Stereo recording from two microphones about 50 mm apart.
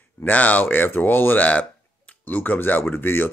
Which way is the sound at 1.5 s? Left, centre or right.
Left.